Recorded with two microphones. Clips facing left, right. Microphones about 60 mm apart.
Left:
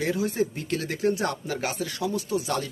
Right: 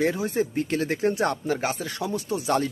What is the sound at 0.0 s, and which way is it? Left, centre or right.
Speech, right.